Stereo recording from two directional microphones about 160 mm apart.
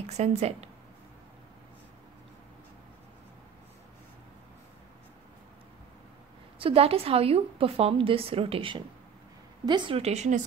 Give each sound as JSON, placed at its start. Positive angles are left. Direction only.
{"t": 0.0, "sound": "a woman's voice", "side_deg": -40}
{"t": 6.6, "sound": "a woman's voice", "side_deg": -35}